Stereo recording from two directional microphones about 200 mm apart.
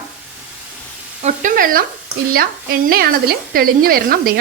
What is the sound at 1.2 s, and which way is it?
Speech, 40° right (ahead or behind).